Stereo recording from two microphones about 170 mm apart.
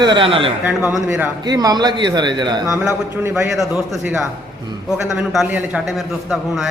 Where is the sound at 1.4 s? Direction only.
25° right (ahead or behind).